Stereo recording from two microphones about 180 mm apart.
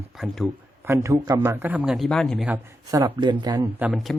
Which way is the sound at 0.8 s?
15° right (ahead or behind).